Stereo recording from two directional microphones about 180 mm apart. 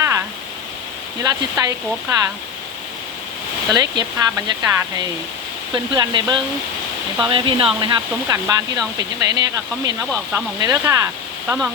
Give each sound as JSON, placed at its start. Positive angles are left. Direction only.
{"t": 0.0, "sound": "a sound", "side_deg": -15}
{"t": 1.2, "sound": "speech", "side_deg": -20}
{"t": 3.7, "sound": "speech", "side_deg": -20}